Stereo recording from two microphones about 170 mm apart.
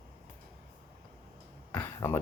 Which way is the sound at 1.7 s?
15° left (ahead or behind).